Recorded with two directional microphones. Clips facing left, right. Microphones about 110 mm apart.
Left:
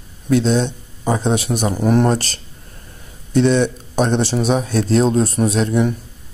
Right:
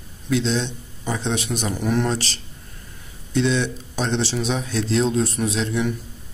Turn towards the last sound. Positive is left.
turn(degrees=45)  # may be behind; listen again after turning